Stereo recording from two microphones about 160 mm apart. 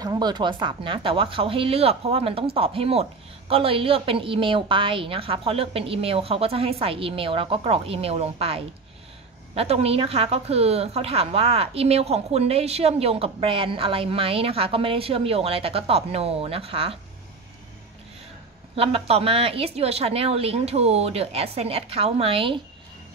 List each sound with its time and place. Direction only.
0.0 s speech: 25° right (ahead or behind)
9.6 s speech: 40° right (ahead or behind)
18.8 s speech: 40° right (ahead or behind)